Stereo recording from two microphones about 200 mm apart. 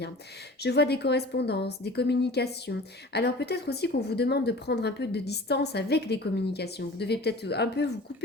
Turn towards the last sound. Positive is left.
turn(degrees=55)  # may be behind; listen again after turning